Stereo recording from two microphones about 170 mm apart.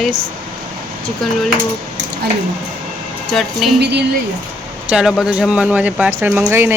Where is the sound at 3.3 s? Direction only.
Centre (ahead or behind).